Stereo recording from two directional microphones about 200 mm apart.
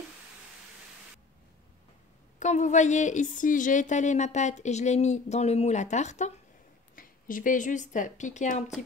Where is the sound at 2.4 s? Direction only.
35° left (ahead or behind).